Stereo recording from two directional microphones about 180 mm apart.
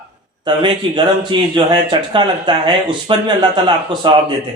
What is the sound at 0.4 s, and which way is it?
Speech, 25° right (ahead or behind).